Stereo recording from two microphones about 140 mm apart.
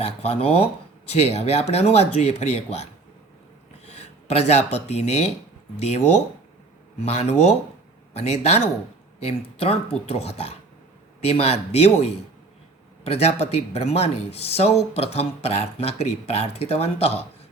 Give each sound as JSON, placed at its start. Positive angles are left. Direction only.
{"t": 0.0, "sound": "speech", "side_deg": 45}
{"t": 3.8, "sound": "speech", "side_deg": 50}
{"t": 7.0, "sound": "speech", "side_deg": 50}